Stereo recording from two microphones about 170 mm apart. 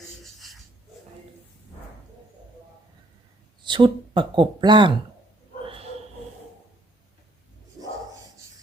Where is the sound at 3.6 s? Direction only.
30° right (ahead or behind).